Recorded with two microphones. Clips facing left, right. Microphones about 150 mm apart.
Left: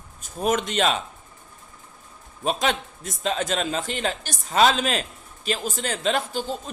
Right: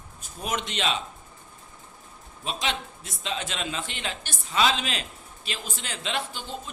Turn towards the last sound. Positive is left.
turn(degrees=40)  # may be behind; listen again after turning